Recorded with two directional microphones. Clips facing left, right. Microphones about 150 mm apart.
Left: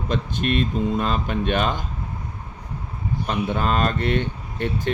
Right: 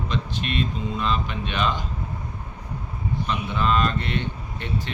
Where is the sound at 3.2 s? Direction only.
45° left (ahead or behind).